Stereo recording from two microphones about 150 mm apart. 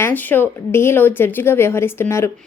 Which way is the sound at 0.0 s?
10° left (ahead or behind).